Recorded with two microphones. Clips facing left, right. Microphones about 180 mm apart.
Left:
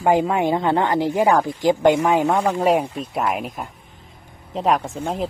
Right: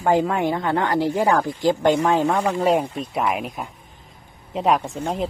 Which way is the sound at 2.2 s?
Centre (ahead or behind).